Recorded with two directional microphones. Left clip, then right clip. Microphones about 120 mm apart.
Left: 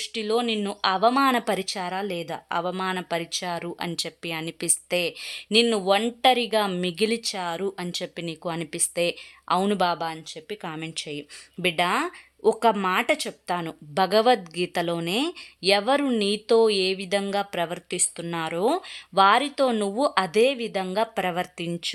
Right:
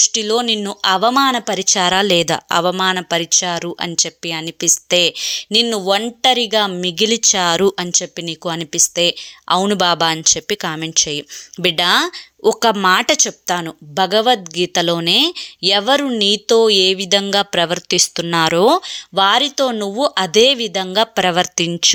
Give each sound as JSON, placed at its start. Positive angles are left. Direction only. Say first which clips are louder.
{"t": 0.0, "sound": "speech", "louder": "right 10 dB", "side_deg": -30}
{"t": 1.3, "sound": "speech", "louder": "right 6 dB", "side_deg": -20}
{"t": 1.6, "sound": "speech", "louder": "right 15 dB", "side_deg": -50}
{"t": 3.9, "sound": "speech", "louder": "right 10 dB", "side_deg": -25}
{"t": 7.0, "sound": "speech", "louder": "right 13 dB", "side_deg": -40}
{"t": 7.9, "sound": "speech", "louder": "right 11 dB", "side_deg": -30}
{"t": 10.6, "sound": "speech", "louder": "right 14 dB", "side_deg": -40}
{"t": 13.9, "sound": "speech", "louder": "right 6 dB", "side_deg": -20}
{"t": 14.8, "sound": "speech", "louder": "right 12 dB", "side_deg": -35}
{"t": 19.1, "sound": "speech", "louder": "right 5 dB", "side_deg": -25}
{"t": 21.8, "sound": "speech", "louder": "right 18 dB", "side_deg": -60}